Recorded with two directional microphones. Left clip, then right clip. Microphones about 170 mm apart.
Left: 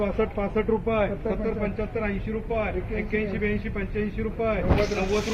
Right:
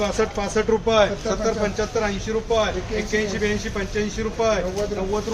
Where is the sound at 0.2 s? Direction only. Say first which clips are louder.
Right 4 dB; 10° right (ahead or behind).